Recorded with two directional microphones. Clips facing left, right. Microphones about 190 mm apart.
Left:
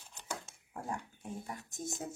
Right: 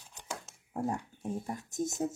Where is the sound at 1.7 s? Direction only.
45° right (ahead or behind).